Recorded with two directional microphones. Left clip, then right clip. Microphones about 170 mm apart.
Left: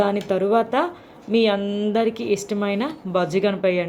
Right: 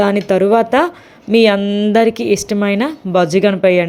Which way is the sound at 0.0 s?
45° right (ahead or behind).